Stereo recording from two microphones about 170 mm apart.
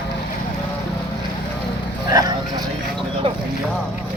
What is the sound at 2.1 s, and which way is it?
Clip-clop, 20° right (ahead or behind).